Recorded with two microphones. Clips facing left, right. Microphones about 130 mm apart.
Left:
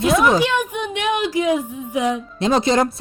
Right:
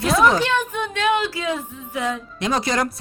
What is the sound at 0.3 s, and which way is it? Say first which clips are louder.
A woman's voice: left 2 dB; 15° left (ahead or behind).